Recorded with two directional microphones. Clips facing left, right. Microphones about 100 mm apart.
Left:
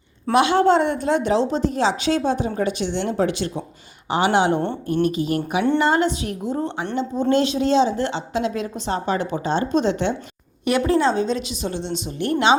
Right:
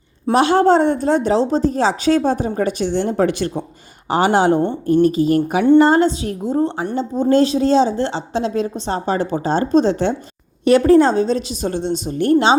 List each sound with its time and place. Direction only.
0.3 s speech: 40° right (ahead or behind)